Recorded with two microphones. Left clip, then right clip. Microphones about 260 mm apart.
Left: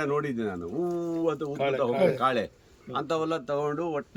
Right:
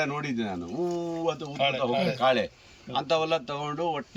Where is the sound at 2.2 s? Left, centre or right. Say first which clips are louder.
Right 2 dB; centre.